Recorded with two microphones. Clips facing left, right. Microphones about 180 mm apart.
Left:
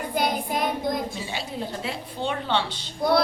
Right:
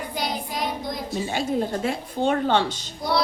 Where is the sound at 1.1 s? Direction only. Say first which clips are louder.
Right 8 dB; 45° right (ahead or behind).